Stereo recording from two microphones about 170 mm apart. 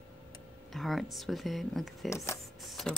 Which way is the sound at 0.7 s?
Centre (ahead or behind).